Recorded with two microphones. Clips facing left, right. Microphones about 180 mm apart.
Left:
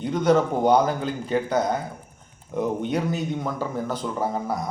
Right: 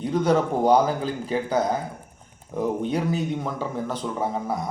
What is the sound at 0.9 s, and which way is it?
Speech, centre (ahead or behind).